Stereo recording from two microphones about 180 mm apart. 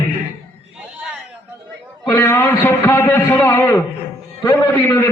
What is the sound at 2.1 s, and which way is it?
A man's voice, 15° left (ahead or behind).